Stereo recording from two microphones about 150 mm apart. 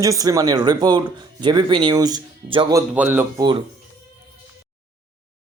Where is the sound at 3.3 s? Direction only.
30° right (ahead or behind).